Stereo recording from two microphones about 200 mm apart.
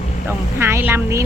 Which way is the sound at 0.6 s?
10° right (ahead or behind).